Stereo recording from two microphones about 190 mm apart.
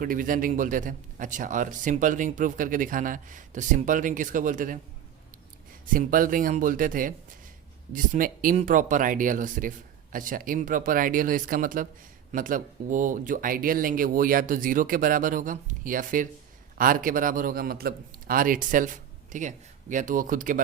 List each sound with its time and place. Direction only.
0.0 s a man's voice: 45° right (ahead or behind)
5.9 s a man's voice: 45° right (ahead or behind)